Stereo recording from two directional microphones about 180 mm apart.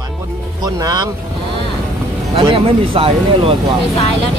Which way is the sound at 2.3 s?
30° right (ahead or behind).